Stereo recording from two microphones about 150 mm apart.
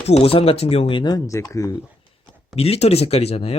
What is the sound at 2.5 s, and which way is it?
Speech, 40° left (ahead or behind).